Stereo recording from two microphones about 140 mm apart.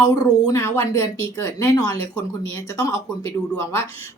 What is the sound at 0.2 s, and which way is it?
Speech, 20° left (ahead or behind).